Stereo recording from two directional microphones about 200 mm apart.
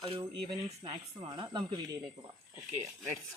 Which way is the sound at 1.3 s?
20° right (ahead or behind).